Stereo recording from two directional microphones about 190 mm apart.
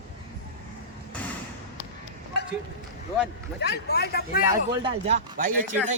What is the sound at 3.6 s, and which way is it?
Speech, 60° left (ahead or behind).